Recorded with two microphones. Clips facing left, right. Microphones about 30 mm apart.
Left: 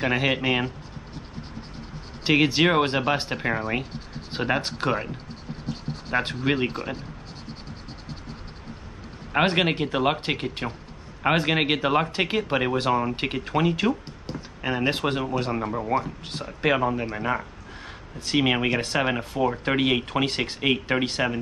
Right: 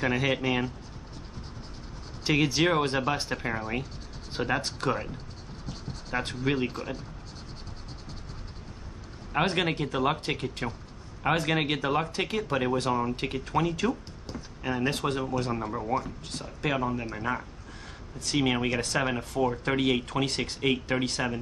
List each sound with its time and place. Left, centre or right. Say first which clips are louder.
0.0 s speech: left 3 dB; left
2.2 s speech: left 5 dB; left
9.3 s speech: left 5 dB; left